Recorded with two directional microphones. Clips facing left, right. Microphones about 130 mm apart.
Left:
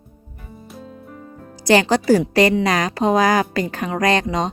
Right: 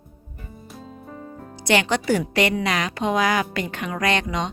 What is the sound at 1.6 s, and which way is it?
A woman's voice, 35° left (ahead or behind).